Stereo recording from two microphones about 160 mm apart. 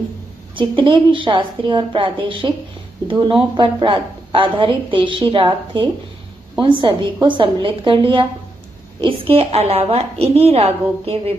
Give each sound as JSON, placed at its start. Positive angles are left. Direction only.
{"t": 0.6, "sound": "a woman's voice", "side_deg": -30}